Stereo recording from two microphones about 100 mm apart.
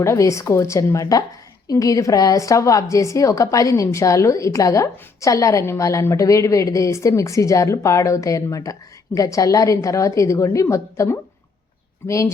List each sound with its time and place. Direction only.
0.0 s a woman's voice: 30° left (ahead or behind)